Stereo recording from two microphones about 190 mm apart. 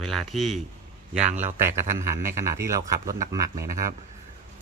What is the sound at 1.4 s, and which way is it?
Speech, 15° right (ahead or behind).